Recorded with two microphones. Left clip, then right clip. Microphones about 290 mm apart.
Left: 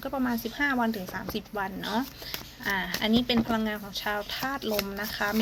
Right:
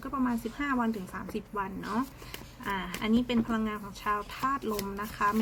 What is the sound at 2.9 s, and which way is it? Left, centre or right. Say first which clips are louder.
Speech: left 2 dB; left.